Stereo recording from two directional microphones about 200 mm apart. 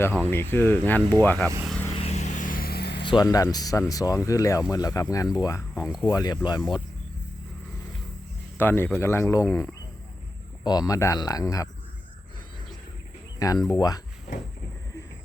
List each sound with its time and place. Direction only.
0.0 s speech: 10° left (ahead or behind)
1.6 s vehicle: 5° left (ahead or behind)
2.0 s vehicle: 35° left (ahead or behind); by 3.0 s 50° left (ahead or behind)
3.0 s speech: 20° left (ahead or behind)
8.5 s speech: 10° left (ahead or behind)
13.7 s speech: 20° left (ahead or behind)